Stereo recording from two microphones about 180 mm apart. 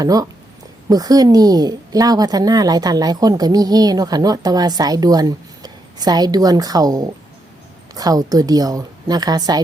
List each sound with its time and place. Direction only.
0.0 s a woman's voice: 20° right (ahead or behind)